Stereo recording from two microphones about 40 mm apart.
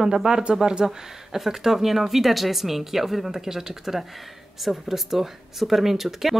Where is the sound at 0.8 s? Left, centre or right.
Centre.